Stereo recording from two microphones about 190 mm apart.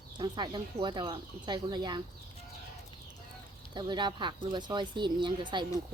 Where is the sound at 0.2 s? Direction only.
25° right (ahead or behind).